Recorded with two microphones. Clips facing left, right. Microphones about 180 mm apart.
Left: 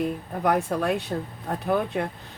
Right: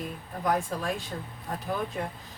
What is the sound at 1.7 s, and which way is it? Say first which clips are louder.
Speech: left 7 dB; 70° left (ahead or behind).